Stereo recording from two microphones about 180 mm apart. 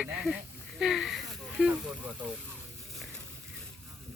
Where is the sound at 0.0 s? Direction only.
5° right (ahead or behind).